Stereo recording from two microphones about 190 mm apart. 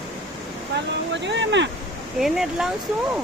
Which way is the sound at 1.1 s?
70° right (ahead or behind).